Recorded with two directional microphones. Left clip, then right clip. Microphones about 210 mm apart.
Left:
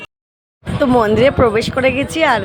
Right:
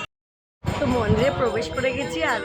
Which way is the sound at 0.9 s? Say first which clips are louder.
Left 10 dB; 45° left (ahead or behind).